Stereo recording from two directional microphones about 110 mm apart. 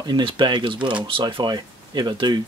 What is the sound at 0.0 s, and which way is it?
Speech, 45° right (ahead or behind).